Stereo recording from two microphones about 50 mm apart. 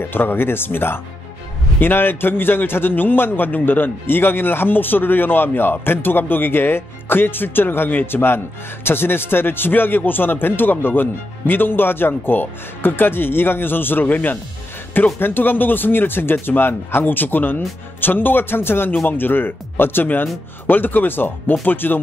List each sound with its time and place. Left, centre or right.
0.0 s a man's voice: left